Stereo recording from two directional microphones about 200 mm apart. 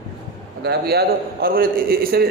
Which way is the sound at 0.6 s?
50° right (ahead or behind).